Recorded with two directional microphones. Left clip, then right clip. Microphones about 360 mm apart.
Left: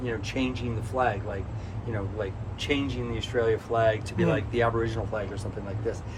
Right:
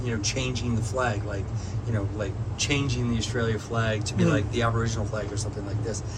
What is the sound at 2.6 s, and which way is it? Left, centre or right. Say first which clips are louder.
A man's voice: right 1 dB; centre.